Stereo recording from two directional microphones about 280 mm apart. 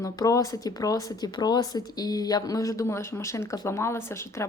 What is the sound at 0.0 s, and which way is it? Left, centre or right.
Speech, centre.